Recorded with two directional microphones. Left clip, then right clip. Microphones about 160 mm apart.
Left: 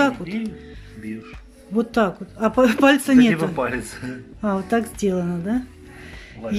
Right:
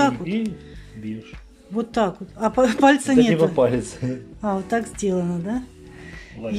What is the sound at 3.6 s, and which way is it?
Speech, 20° right (ahead or behind).